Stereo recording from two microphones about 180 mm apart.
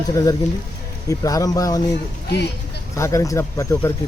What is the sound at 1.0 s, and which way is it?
Speech, 20° left (ahead or behind).